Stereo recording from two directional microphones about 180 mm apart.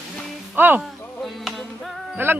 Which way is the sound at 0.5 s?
10° right (ahead or behind).